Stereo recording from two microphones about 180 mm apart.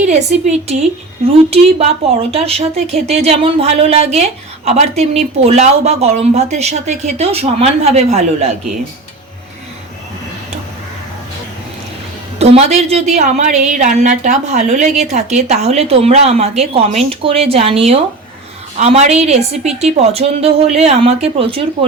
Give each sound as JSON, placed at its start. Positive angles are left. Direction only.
{"t": 0.0, "sound": "speech", "side_deg": -40}
{"t": 12.4, "sound": "speech", "side_deg": -35}